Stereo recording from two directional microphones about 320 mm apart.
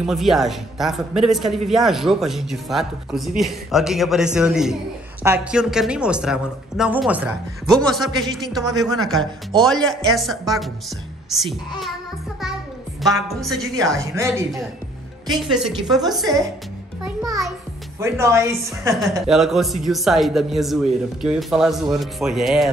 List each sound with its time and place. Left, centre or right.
0.0 s a woman's voice: centre
13.0 s a woman's voice: centre